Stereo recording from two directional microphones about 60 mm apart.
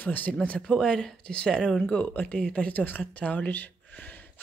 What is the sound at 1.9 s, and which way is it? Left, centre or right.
Speech, left.